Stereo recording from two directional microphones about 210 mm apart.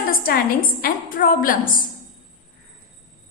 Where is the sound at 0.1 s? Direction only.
45° left (ahead or behind).